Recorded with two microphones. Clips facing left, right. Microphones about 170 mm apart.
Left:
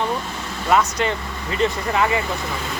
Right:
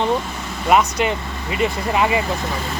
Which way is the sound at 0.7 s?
15° right (ahead or behind).